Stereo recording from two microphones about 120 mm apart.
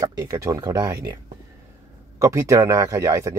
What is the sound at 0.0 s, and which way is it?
Speech, 25° right (ahead or behind).